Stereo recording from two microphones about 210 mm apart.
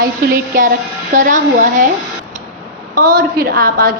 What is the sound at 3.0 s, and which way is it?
Speech, 40° right (ahead or behind).